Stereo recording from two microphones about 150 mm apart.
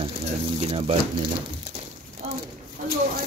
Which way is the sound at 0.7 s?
40° right (ahead or behind).